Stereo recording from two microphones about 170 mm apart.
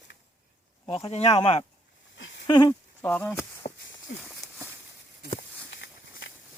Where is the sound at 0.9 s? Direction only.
35° left (ahead or behind).